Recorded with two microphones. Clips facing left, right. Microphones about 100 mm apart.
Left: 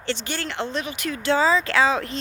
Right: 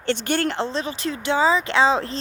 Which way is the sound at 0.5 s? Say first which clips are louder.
Right 2 dB; 30° right (ahead or behind).